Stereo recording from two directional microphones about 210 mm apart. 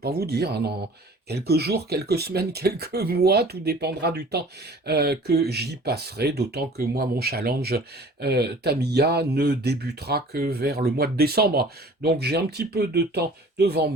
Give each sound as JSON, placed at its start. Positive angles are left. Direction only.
{"t": 0.0, "sound": "speech", "side_deg": -50}